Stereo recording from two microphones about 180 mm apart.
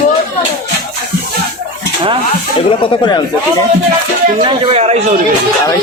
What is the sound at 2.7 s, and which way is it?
Speech, 25° left (ahead or behind).